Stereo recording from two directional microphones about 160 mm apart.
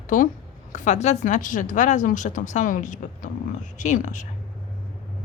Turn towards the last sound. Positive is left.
turn(degrees=50)  # may be behind; listen again after turning